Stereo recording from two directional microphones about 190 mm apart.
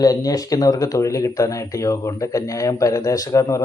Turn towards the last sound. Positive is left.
turn(degrees=15)  # may be behind; listen again after turning